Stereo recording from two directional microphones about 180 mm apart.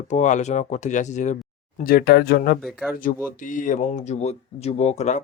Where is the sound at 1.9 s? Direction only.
55° left (ahead or behind).